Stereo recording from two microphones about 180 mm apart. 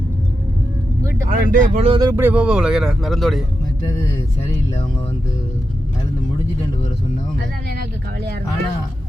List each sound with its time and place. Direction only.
1.3 s speech: 50° right (ahead or behind)
1.7 s speech: 35° right (ahead or behind)
2.0 s speech: 15° right (ahead or behind); by 3.4 s centre (ahead or behind)